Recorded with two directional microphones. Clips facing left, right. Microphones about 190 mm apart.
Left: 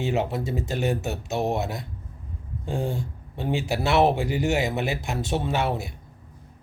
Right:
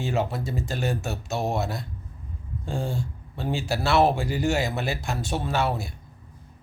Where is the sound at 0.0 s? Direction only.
20° left (ahead or behind).